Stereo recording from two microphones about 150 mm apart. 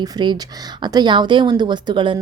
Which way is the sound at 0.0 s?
30° right (ahead or behind).